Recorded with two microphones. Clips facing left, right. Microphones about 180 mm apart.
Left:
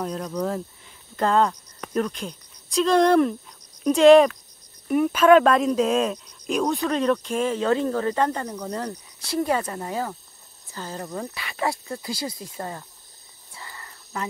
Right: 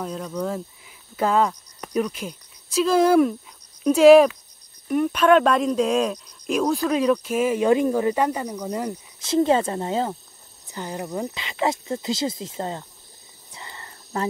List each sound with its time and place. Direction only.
0.0 s speech: centre (ahead or behind)
9.2 s speech: 25° right (ahead or behind)
13.5 s whispering: 20° right (ahead or behind)